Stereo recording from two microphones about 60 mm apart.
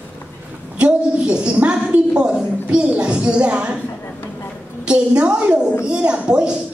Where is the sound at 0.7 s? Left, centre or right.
Centre.